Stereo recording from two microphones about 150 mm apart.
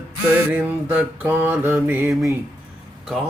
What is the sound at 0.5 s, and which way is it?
Speech, 10° right (ahead or behind).